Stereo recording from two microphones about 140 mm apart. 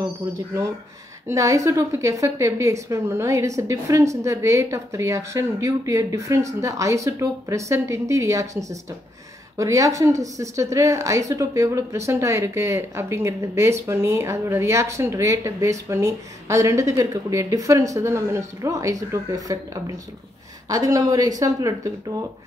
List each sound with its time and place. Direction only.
0.3 s speech: 20° right (ahead or behind)